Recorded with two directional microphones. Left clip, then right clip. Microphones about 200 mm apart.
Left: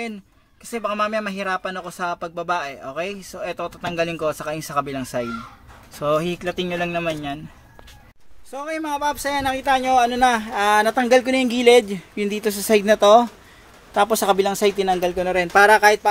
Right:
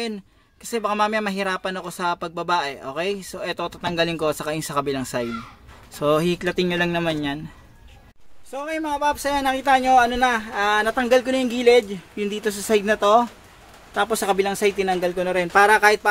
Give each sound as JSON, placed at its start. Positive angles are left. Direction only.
{"t": 0.7, "sound": "speech", "side_deg": -15}
{"t": 8.5, "sound": "speech", "side_deg": 5}
{"t": 10.1, "sound": "speech", "side_deg": 10}
{"t": 15.8, "sound": "speech", "side_deg": 0}